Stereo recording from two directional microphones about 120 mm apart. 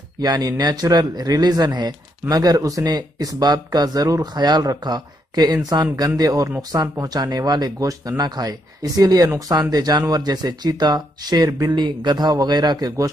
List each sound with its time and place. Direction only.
0.2 s speech: 35° right (ahead or behind)